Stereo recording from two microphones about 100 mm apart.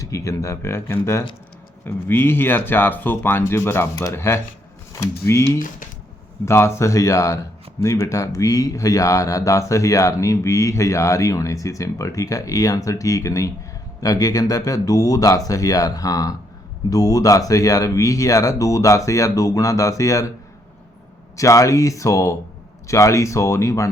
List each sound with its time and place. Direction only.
0.0 s speech: 30° left (ahead or behind)
21.3 s speech: 30° left (ahead or behind)